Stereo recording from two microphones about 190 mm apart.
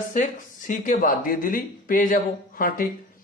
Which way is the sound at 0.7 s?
45° left (ahead or behind).